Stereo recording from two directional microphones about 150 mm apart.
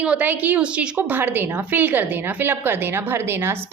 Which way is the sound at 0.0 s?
10° right (ahead or behind).